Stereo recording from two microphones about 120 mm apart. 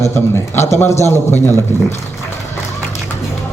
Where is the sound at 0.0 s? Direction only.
20° left (ahead or behind).